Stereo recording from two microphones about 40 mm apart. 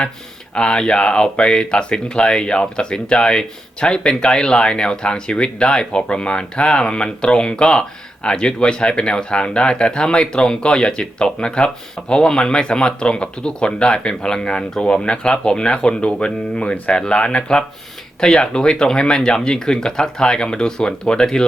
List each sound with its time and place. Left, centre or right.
0.5 s speech: left